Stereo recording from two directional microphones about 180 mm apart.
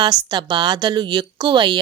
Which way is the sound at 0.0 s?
25° right (ahead or behind).